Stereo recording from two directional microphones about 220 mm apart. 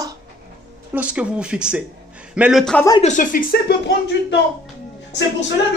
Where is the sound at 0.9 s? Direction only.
5° right (ahead or behind).